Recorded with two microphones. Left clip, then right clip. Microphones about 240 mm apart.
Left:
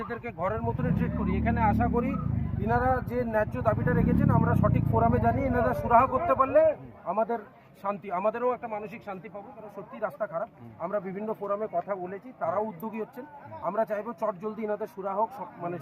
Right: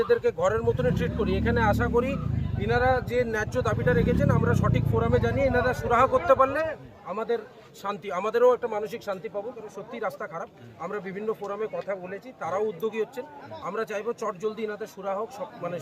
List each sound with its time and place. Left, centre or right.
0.0 s speech: centre